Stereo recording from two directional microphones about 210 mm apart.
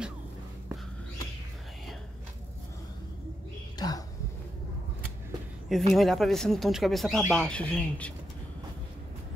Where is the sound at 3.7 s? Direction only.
20° left (ahead or behind).